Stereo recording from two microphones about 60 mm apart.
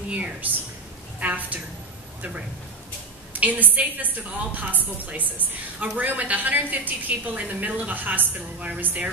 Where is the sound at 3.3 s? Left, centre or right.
Right.